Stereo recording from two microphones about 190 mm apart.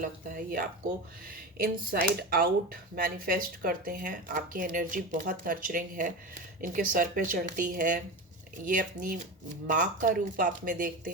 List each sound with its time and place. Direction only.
0.0 s speech: 45° right (ahead or behind)